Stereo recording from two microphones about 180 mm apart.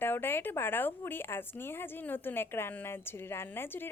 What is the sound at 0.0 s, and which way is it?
Speech, 10° left (ahead or behind).